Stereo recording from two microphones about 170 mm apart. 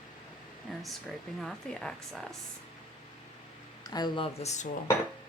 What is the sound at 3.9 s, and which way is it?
Speech, 25° left (ahead or behind).